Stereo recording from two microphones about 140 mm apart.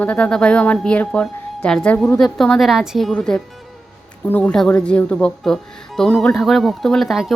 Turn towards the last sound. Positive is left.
turn(degrees=0)  # may be behind; listen again after turning